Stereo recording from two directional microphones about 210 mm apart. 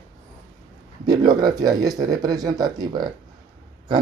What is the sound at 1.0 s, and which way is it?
Speech, 20° right (ahead or behind).